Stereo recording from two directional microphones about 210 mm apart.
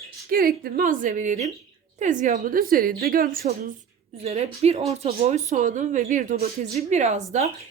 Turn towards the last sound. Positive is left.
turn(degrees=-35)  # may be behind; listen again after turning